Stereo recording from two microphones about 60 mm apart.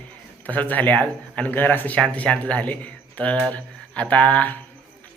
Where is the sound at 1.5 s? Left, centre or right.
Left.